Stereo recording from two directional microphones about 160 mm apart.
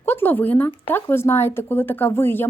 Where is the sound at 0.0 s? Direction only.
15° left (ahead or behind).